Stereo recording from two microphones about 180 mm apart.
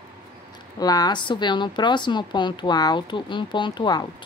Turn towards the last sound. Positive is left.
turn(degrees=25)  # may be behind; listen again after turning